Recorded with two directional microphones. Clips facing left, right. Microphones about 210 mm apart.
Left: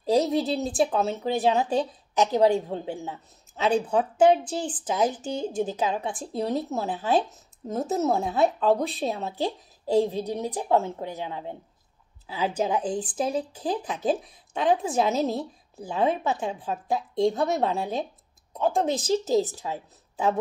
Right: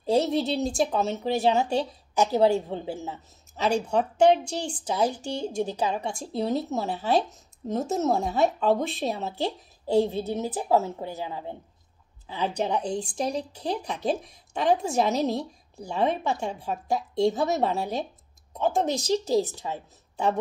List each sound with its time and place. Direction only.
0.1 s speech: centre (ahead or behind)
5.9 s speech: centre (ahead or behind)
19.2 s speech: 20° left (ahead or behind)
19.6 s speech: centre (ahead or behind)